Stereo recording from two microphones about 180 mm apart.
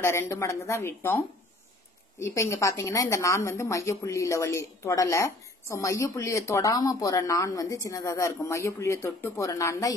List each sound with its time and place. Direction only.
0.0 s a woman's voice: 15° left (ahead or behind)